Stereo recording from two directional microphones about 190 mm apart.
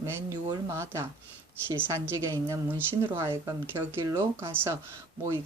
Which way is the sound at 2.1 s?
15° right (ahead or behind).